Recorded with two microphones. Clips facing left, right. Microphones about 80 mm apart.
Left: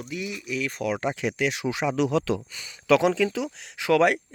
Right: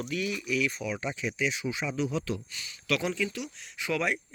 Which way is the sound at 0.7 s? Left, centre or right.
Left.